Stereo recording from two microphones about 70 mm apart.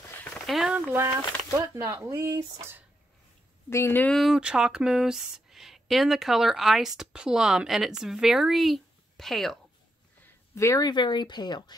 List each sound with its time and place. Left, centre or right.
0.3 s a sound: centre
0.9 s speech: right
3.7 s speech: left
4.1 s speech: centre
4.4 s speech: centre
10.5 s speech: left
10.8 s speech: left